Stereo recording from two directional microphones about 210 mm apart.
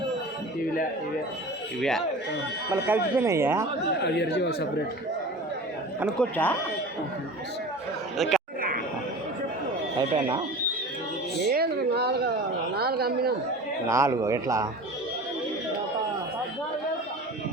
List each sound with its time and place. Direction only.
2.8 s speech: 10° right (ahead or behind)
4.0 s speech: 55° left (ahead or behind)
6.1 s speech: 10° left (ahead or behind)
8.2 s speech: centre (ahead or behind)
10.0 s speech: 25° right (ahead or behind)
11.4 s speech: 50° right (ahead or behind)
13.8 s speech: 15° right (ahead or behind)